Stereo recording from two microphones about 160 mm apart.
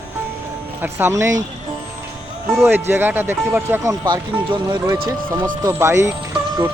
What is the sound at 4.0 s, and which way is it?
Speech, 30° right (ahead or behind).